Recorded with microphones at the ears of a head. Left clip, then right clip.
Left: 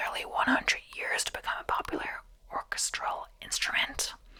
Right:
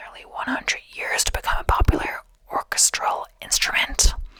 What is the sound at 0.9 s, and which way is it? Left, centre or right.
Speech, right.